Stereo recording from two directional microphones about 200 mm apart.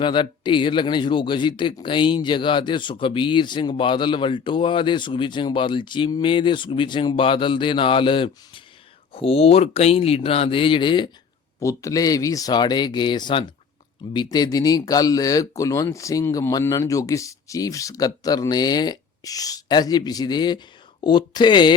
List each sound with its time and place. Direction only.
0.0 s speech: 25° left (ahead or behind)